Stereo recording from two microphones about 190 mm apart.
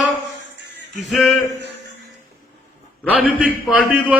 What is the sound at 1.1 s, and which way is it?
Speech, centre (ahead or behind).